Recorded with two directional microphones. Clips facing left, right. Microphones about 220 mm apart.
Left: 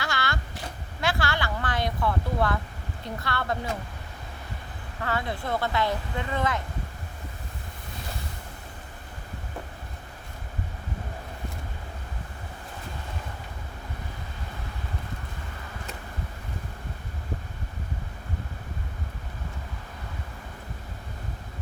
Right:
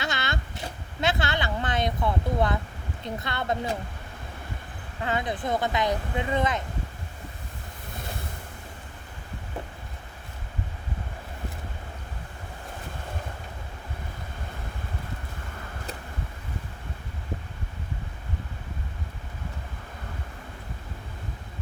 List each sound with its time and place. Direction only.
0.0 s a sound: 20° right (ahead or behind)
1.0 s speech: 20° right (ahead or behind)
5.0 s speech: 20° right (ahead or behind)